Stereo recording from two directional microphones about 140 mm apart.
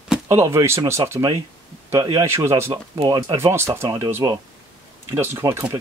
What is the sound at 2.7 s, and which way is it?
Speech, 30° right (ahead or behind).